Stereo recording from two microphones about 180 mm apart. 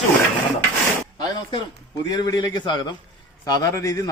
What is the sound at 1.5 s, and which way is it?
A man's voice, 20° left (ahead or behind).